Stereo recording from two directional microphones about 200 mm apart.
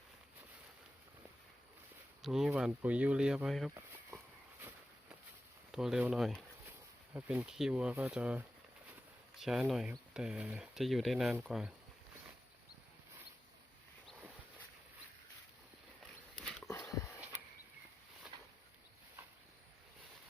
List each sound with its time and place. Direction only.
2.2 s speech: centre (ahead or behind)
5.7 s speech: centre (ahead or behind)
16.4 s dog: 5° left (ahead or behind)
16.6 s a sound: 15° left (ahead or behind)